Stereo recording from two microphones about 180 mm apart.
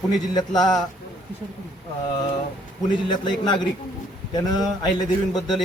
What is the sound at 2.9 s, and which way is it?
A man's voice, 25° left (ahead or behind).